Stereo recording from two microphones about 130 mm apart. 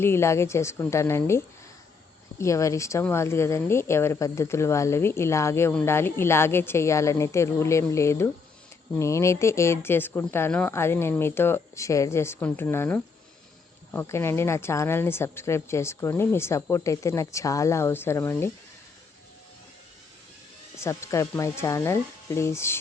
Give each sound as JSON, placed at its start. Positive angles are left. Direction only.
{"t": 0.0, "sound": "speech", "side_deg": 20}
{"t": 20.7, "sound": "speech", "side_deg": 20}